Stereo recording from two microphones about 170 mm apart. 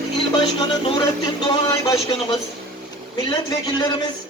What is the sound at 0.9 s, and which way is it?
Music, 25° left (ahead or behind).